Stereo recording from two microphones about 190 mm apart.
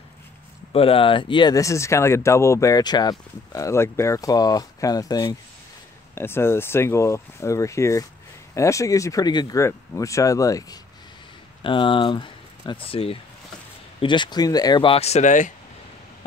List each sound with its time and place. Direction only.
0.7 s speech: 30° left (ahead or behind)